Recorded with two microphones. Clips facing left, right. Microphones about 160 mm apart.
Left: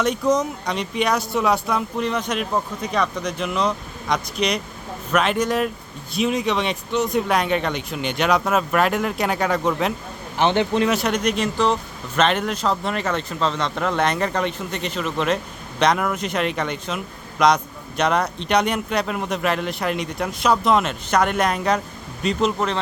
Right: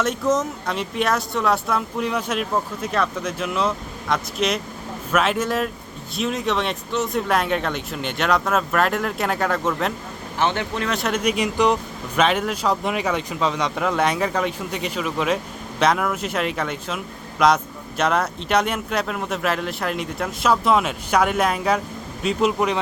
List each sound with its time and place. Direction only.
0.0 s speech: centre (ahead or behind)
10.3 s a man's voice: 20° left (ahead or behind)
10.8 s speech: centre (ahead or behind)